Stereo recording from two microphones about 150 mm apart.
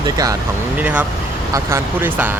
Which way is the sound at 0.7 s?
10° right (ahead or behind).